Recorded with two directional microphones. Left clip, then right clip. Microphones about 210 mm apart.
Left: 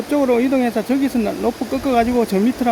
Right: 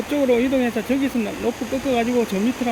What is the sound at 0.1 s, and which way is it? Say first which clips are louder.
Speech: left 3 dB; 15° left (ahead or behind).